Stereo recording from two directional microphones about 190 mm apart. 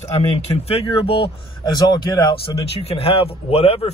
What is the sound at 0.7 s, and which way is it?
Speech, 30° left (ahead or behind).